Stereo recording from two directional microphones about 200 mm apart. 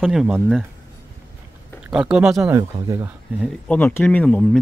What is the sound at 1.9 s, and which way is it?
Speech, 5° right (ahead or behind).